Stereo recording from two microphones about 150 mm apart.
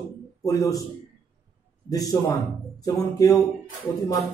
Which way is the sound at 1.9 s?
25° left (ahead or behind).